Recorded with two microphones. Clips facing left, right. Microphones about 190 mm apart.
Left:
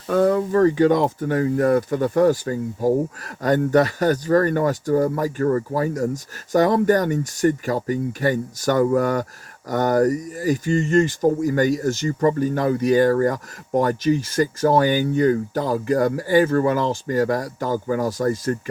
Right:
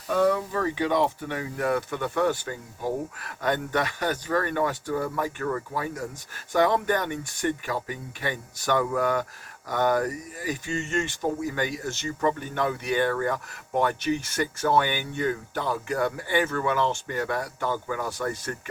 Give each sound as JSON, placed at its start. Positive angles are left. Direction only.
{"t": 0.1, "sound": "speech", "side_deg": 50}